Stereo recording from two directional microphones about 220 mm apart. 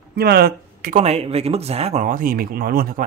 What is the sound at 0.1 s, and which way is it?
Speech, 45° right (ahead or behind).